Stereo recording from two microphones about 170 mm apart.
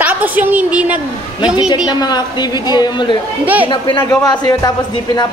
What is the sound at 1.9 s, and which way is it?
A woman's voice, 25° left (ahead or behind).